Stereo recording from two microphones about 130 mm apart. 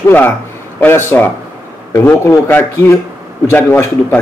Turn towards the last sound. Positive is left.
turn(degrees=15)  # may be behind; listen again after turning